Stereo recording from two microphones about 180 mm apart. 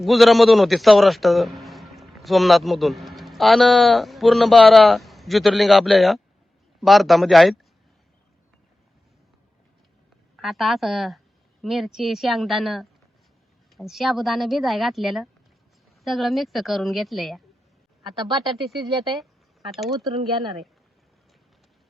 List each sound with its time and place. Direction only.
0.0 s a man's voice: centre (ahead or behind)
10.3 s a woman's voice: centre (ahead or behind)
18.0 s speech: 25° right (ahead or behind)
18.5 s a woman's voice: centre (ahead or behind)